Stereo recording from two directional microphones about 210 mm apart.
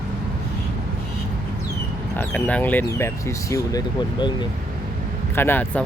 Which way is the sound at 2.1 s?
5° left (ahead or behind).